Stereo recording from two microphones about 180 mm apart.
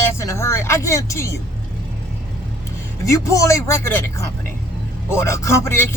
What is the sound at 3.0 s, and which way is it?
Speech, 20° left (ahead or behind).